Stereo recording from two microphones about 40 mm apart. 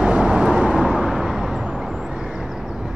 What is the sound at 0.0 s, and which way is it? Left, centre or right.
Vehicle, right.